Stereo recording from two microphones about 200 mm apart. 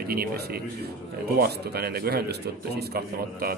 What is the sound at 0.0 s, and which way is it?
Speech, 50° right (ahead or behind).